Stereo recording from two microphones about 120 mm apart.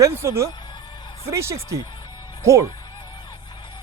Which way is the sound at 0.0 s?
20° right (ahead or behind).